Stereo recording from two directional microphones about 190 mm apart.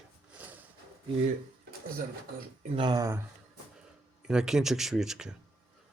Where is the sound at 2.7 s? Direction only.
25° right (ahead or behind).